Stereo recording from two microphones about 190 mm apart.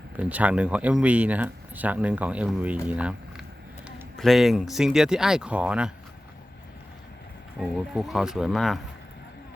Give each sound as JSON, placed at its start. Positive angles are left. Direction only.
{"t": 0.2, "sound": "speech", "side_deg": -5}
{"t": 7.6, "sound": "speech", "side_deg": -5}